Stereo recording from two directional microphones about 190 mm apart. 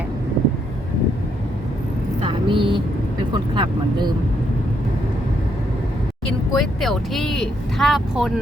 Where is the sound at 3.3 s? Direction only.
20° right (ahead or behind).